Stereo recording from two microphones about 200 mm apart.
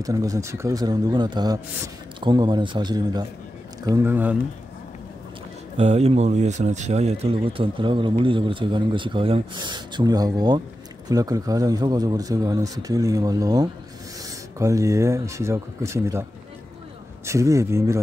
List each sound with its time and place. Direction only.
0.0 s speech: 15° right (ahead or behind)
5.8 s speech: 30° right (ahead or behind); by 16.3 s 15° right (ahead or behind)
17.3 s speech: 15° right (ahead or behind)